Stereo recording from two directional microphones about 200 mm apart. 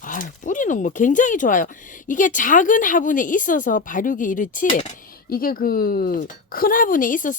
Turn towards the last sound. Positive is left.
turn(degrees=40)  # may be behind; listen again after turning